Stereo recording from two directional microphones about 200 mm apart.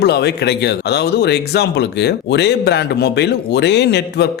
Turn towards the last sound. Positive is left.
turn(degrees=55)  # may be behind; listen again after turning